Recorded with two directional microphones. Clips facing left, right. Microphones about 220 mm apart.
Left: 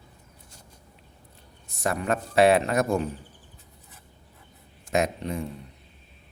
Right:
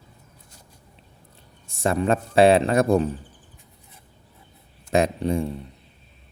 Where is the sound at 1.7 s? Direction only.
30° right (ahead or behind).